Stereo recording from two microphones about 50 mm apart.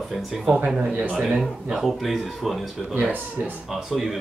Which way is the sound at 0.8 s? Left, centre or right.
Right.